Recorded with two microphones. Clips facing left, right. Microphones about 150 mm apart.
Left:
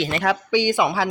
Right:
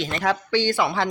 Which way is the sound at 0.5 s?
15° left (ahead or behind).